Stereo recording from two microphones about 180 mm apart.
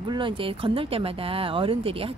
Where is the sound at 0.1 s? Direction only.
25° right (ahead or behind).